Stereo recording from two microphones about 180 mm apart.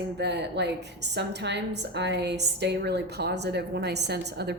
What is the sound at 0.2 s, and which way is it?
A woman's voice, 70° right (ahead or behind).